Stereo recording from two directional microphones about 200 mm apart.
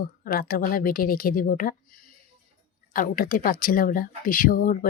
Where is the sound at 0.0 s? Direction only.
45° left (ahead or behind).